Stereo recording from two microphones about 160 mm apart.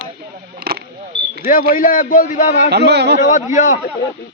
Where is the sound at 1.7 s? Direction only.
60° left (ahead or behind).